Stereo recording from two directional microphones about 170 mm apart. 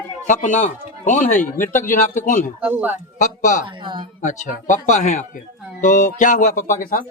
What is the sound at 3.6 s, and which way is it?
Speech, 30° right (ahead or behind).